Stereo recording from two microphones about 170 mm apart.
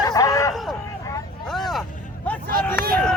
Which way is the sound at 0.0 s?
20° left (ahead or behind).